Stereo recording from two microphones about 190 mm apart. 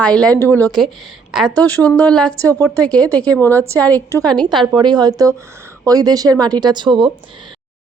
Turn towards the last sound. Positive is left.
turn(degrees=-25)  # may be behind; listen again after turning